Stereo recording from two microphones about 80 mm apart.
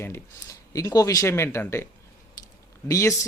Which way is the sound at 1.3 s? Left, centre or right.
Left.